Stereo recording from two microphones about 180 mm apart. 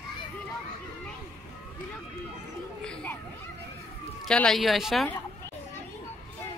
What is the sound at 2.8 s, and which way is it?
Speech, 5° left (ahead or behind).